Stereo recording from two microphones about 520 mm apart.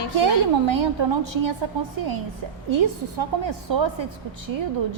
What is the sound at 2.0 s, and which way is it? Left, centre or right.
Speech, right.